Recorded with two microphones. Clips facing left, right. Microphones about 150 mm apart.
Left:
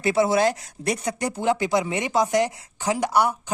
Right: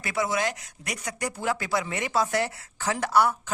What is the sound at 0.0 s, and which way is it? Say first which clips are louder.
Speech: left 8 dB; 30° left (ahead or behind).